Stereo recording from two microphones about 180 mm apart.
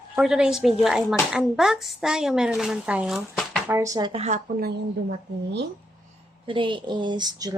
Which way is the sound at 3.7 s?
15° right (ahead or behind).